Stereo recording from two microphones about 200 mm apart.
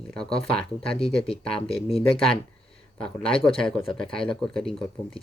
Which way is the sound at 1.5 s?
30° left (ahead or behind).